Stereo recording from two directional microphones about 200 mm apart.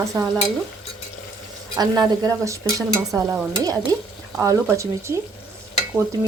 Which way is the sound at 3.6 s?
20° right (ahead or behind).